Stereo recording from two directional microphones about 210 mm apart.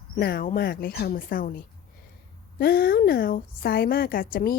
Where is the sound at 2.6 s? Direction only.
45° left (ahead or behind).